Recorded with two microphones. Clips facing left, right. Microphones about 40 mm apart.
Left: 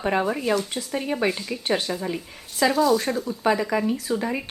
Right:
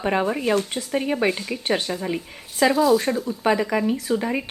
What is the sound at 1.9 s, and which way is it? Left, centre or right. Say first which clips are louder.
A woman's voice: right 2 dB; centre.